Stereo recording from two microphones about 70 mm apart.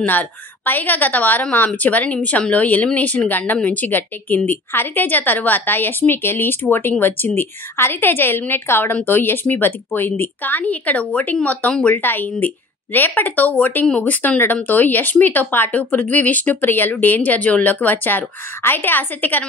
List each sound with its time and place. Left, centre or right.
0.0 s speech: left